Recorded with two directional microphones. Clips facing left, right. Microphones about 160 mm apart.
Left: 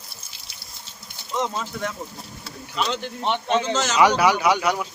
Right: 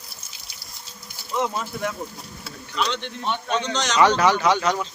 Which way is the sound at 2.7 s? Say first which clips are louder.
Even; centre (ahead or behind).